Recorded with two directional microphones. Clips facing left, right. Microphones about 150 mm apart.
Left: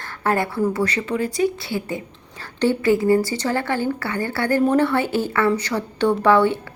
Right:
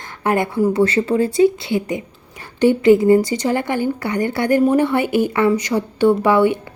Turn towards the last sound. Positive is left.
turn(degrees=-15)  # may be behind; listen again after turning